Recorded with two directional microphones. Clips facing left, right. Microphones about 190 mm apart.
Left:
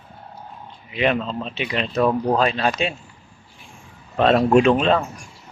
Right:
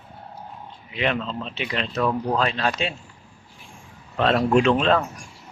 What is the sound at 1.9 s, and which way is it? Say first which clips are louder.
Speech: left 5 dB; 30° left (ahead or behind).